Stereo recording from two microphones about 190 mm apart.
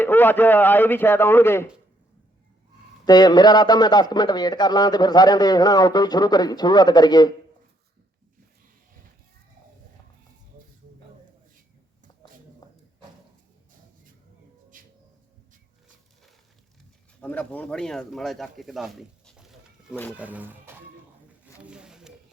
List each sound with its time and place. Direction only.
0.0 s a man's voice: 10° left (ahead or behind)
3.1 s a man's voice: 20° left (ahead or behind)
12.6 s a sound: 20° left (ahead or behind)
14.7 s a sound: 45° right (ahead or behind)
17.2 s speech: 10° left (ahead or behind); by 20.8 s 10° right (ahead or behind)
21.6 s roaring cats: 5° right (ahead or behind)